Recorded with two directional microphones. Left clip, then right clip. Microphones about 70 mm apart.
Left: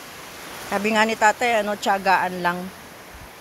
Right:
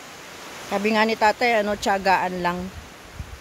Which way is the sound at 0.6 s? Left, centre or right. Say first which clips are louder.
Left 1 dB; right.